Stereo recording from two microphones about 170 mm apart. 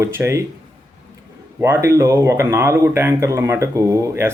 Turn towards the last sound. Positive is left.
turn(degrees=-15)  # may be behind; listen again after turning